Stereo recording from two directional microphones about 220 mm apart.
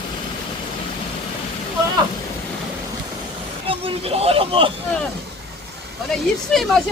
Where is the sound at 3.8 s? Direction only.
25° right (ahead or behind).